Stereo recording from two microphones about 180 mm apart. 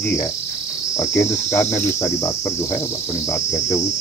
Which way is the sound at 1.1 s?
15° left (ahead or behind).